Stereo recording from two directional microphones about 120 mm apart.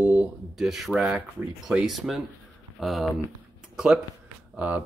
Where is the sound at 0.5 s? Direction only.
5° right (ahead or behind).